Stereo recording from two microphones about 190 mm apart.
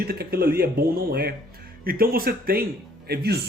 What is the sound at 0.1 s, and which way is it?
Speech, 55° right (ahead or behind).